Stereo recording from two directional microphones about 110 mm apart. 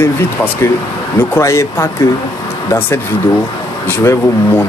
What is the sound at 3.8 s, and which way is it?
Speech, 20° left (ahead or behind).